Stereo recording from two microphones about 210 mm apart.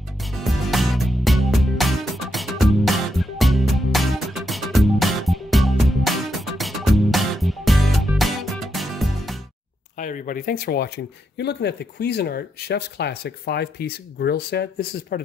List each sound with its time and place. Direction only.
0.2 s music: centre (ahead or behind)
9.9 s speech: 40° left (ahead or behind)